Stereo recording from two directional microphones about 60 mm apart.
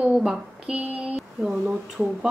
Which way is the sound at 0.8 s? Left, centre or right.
Right.